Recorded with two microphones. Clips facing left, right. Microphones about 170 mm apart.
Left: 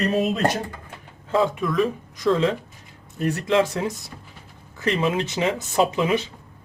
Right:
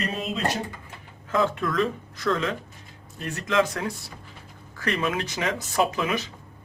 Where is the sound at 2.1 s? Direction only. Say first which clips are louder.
Left 6 dB; 20° left (ahead or behind).